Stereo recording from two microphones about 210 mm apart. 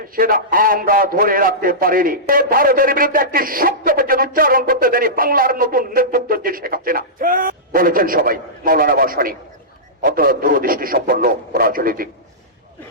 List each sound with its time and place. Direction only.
0.2 s a man's voice: 45° right (ahead or behind)